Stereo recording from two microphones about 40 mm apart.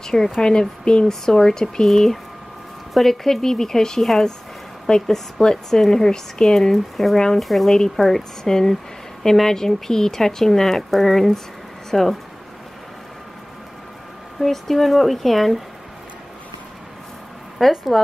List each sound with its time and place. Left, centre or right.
0.0 s a sound: centre
0.4 s speech: centre
2.9 s speech: centre
14.4 s speech: centre
17.6 s speech: centre